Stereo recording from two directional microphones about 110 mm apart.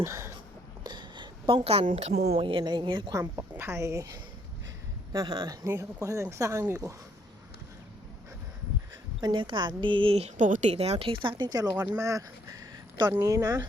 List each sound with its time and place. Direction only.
0.0 s a sound: 25° right (ahead or behind)
0.9 s a sound: 45° right (ahead or behind)
1.6 s speech: 65° right (ahead or behind); by 2.4 s 85° right
2.4 s speech: 50° right (ahead or behind)
3.5 s a woman's voice: 20° right (ahead or behind); by 5.5 s 40° right (ahead or behind)
5.6 s a woman's voice: 25° right (ahead or behind)
9.2 s speech: 45° right (ahead or behind); by 11.1 s 70° right (ahead or behind)
11.1 s speech: 50° right (ahead or behind)
11.4 s speech: 35° right (ahead or behind)